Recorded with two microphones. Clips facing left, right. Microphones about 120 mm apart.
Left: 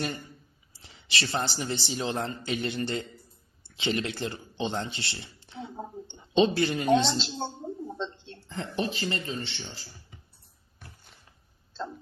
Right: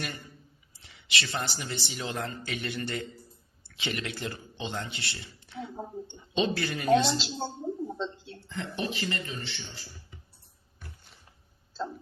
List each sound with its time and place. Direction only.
0.7 s a woman's voice: 30° left (ahead or behind)
7.2 s a sound: 5° right (ahead or behind)
8.4 s speech: 35° left (ahead or behind)